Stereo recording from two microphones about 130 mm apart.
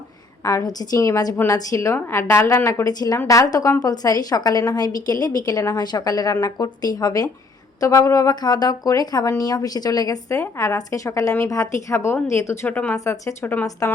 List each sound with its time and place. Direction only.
0.4 s a woman's voice: 25° left (ahead or behind)